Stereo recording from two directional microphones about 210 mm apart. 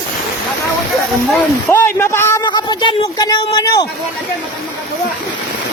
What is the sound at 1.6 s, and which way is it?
Speech, 10° left (ahead or behind).